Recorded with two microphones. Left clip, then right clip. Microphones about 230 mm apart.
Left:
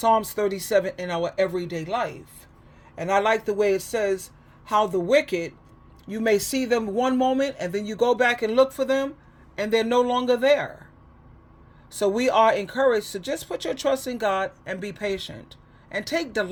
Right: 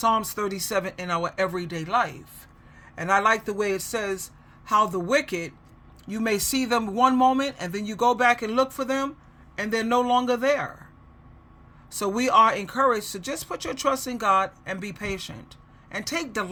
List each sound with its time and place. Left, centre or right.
0.2 s speech: centre
11.9 s speech: right